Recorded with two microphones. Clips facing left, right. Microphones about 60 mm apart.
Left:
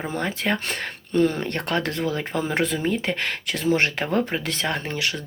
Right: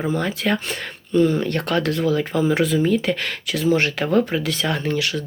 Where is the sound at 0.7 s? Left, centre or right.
Left.